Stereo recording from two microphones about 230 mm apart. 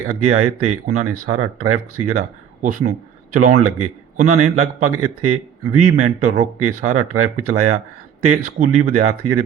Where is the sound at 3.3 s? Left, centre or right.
Right.